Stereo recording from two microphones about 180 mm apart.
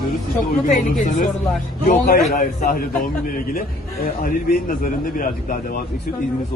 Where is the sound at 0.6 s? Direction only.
45° left (ahead or behind).